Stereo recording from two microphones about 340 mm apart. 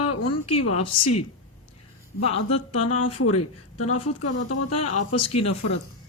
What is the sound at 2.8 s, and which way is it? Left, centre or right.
Speech, left.